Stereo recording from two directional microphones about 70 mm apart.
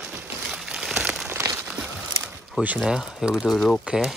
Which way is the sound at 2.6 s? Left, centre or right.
Centre.